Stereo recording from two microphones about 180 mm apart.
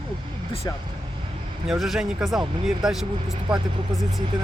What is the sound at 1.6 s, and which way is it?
Speech, centre (ahead or behind).